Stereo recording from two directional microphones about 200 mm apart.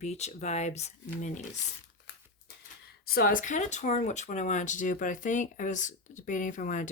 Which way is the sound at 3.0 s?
50° left (ahead or behind).